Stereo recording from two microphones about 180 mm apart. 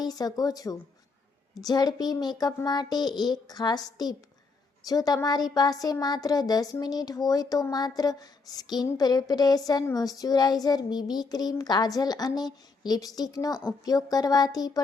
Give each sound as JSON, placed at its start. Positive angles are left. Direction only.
{"t": 0.0, "sound": "speech", "side_deg": 20}